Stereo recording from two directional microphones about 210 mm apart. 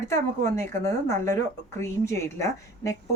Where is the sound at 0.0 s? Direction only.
15° left (ahead or behind).